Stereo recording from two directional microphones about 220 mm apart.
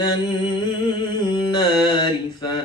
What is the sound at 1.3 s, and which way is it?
Mantra, 20° left (ahead or behind).